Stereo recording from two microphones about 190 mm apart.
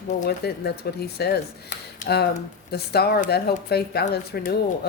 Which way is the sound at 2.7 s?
60° left (ahead or behind).